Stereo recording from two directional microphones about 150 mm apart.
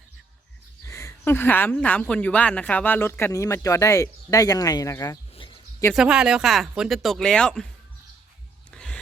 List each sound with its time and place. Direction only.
0.9 s a woman's voice: 20° left (ahead or behind)
5.9 s speech: 5° right (ahead or behind)
8.7 s a sound: 5° left (ahead or behind)